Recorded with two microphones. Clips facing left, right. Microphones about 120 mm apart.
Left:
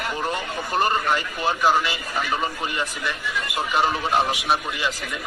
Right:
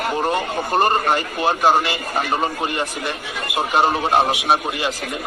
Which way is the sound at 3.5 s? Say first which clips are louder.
Right 5 dB; 25° right (ahead or behind).